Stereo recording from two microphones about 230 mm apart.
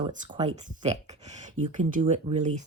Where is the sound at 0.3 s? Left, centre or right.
Right.